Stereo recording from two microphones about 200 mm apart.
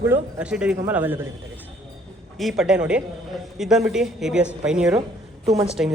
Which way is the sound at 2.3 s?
Centre (ahead or behind).